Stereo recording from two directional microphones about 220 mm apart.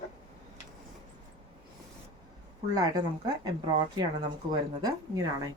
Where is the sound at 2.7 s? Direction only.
15° right (ahead or behind).